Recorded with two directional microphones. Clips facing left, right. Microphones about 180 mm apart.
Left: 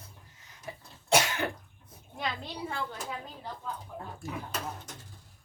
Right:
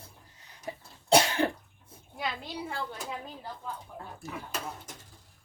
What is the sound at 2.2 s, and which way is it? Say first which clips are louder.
Speech: even; 5° right (ahead or behind).